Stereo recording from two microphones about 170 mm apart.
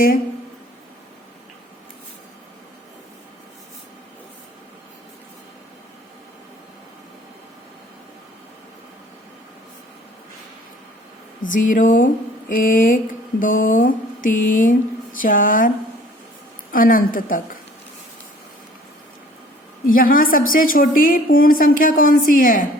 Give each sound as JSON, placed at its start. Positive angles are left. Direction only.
{"t": 11.5, "sound": "speech", "side_deg": 50}
{"t": 16.7, "sound": "a woman's voice", "side_deg": 55}
{"t": 19.9, "sound": "a woman's voice", "side_deg": 55}